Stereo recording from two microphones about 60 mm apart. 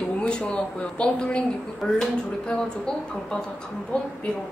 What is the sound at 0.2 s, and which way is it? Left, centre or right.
A woman's voice, centre.